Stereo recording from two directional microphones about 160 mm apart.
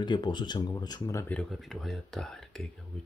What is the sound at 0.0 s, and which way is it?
Speech, 30° left (ahead or behind).